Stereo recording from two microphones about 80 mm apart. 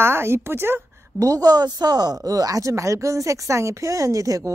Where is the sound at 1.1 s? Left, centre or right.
Right.